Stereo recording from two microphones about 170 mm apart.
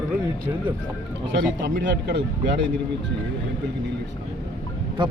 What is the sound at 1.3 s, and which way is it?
Speech, 85° right.